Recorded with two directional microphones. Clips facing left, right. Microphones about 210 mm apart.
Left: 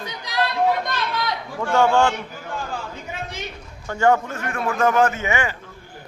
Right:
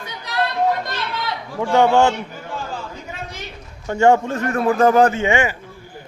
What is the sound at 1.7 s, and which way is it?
Speech, 20° right (ahead or behind).